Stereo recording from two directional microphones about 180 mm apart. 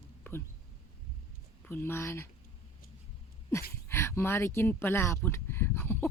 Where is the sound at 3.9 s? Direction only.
15° left (ahead or behind).